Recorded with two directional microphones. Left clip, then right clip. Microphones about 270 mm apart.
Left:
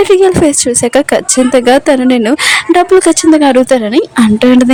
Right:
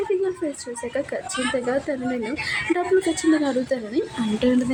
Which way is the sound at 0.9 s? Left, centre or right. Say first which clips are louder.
Left 16 dB; left.